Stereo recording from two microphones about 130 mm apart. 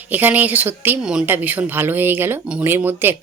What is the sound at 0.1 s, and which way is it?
Speech, 15° right (ahead or behind).